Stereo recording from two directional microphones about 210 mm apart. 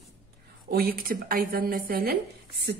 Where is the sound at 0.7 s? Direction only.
45° right (ahead or behind).